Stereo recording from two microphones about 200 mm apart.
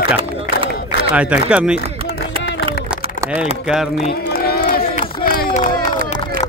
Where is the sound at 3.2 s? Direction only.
5° right (ahead or behind).